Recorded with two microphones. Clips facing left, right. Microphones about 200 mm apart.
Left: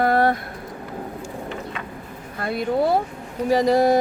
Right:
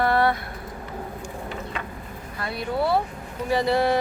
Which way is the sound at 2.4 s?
50° left (ahead or behind).